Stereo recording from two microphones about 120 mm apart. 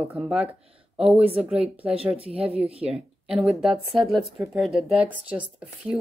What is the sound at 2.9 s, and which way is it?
A woman's voice, centre (ahead or behind).